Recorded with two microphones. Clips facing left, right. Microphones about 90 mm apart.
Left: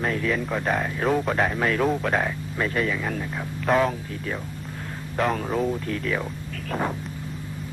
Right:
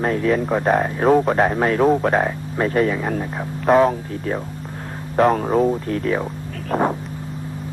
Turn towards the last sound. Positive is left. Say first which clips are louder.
# right 7 dB
turn(degrees=-35)  # may be behind; listen again after turning